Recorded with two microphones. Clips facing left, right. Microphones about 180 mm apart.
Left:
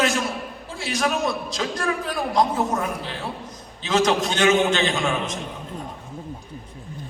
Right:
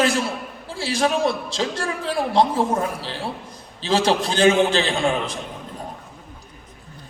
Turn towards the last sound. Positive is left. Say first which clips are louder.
# right 2 dB
turn(degrees=-30)  # may be behind; listen again after turning